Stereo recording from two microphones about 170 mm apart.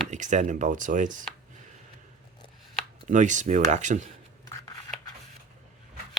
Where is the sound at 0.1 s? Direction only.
45° right (ahead or behind).